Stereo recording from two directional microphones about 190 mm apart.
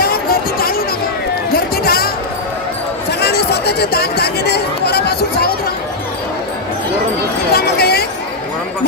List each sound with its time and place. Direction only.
0.0 s music: 50° left (ahead or behind)
1.5 s basketball bounce: 55° left (ahead or behind)
3.1 s chatter: 60° left (ahead or behind)
7.5 s a sound: 55° left (ahead or behind)